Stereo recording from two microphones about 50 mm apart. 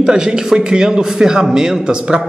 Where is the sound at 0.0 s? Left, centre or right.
Centre.